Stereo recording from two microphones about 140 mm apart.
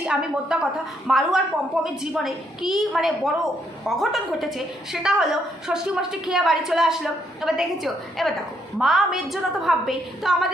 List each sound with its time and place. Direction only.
0.0 s a woman's voice: 5° right (ahead or behind)